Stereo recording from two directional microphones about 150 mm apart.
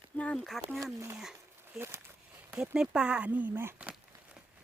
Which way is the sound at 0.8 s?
15° right (ahead or behind).